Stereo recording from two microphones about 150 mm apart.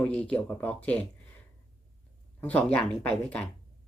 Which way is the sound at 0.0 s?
10° left (ahead or behind).